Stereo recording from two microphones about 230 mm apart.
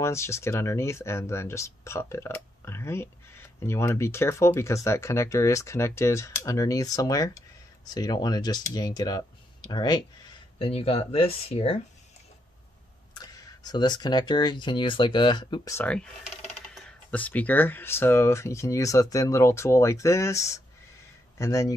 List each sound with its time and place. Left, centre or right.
0.0 s speech: centre
13.1 s speech: centre